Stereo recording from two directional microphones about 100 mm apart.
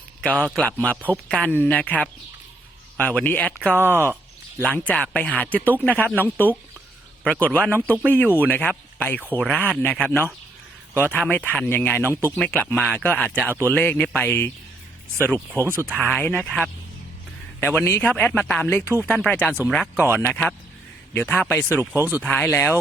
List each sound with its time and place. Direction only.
0.3 s speech: 10° left (ahead or behind)
1.1 s speech: 5° left (ahead or behind)
1.5 s speech: 15° left (ahead or behind)
3.0 s speech: 15° left (ahead or behind)
3.8 s speech: 25° right (ahead or behind)
4.8 s speech: 15° left (ahead or behind)
13.4 s speech: 25° right (ahead or behind)
13.7 s speech: 15° left (ahead or behind)
15.3 s speech: 20° right (ahead or behind)
16.1 s speech: 15° left (ahead or behind)
21.9 s speech: 20° right (ahead or behind)
22.2 s speech: 15° left (ahead or behind)